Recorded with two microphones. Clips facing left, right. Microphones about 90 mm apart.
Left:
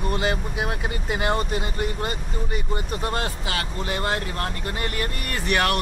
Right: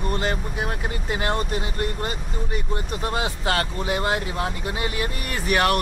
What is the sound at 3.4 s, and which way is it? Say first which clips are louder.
Speech: right 5 dB; 45° right (ahead or behind).